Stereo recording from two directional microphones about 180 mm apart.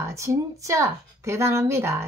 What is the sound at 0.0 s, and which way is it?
Speech, 15° right (ahead or behind).